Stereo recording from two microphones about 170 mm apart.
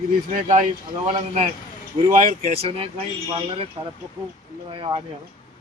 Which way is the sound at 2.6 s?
35° right (ahead or behind).